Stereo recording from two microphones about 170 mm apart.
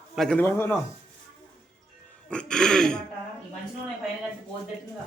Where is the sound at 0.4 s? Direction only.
15° left (ahead or behind).